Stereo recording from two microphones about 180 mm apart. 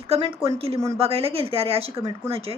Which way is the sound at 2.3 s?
35° right (ahead or behind).